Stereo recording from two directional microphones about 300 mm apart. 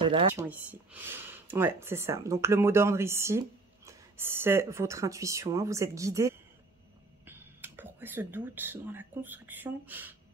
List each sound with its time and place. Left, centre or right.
0.0 s speech: centre
0.5 s speech: centre